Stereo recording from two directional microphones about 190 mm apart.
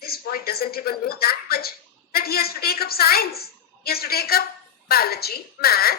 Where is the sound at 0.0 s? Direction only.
50° left (ahead or behind).